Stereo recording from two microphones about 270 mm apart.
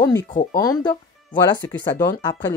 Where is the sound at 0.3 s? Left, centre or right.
Left.